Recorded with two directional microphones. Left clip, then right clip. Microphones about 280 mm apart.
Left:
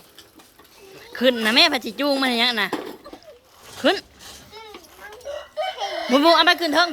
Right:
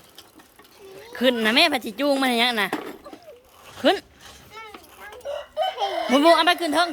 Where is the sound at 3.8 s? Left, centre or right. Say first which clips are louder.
Even; centre.